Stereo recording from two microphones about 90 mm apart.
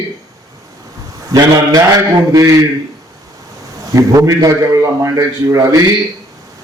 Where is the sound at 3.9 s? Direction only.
40° right (ahead or behind).